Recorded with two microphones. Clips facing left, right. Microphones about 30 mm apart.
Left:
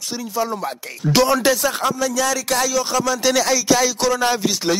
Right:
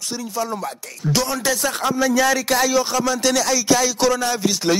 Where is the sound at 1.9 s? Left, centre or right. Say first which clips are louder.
Right 3 dB; centre.